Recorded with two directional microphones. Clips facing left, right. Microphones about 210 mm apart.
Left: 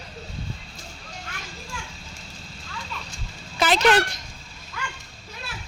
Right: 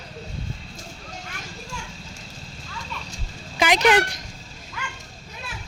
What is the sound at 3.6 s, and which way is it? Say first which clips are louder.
Dog: right 1 dB; 15° right (ahead or behind).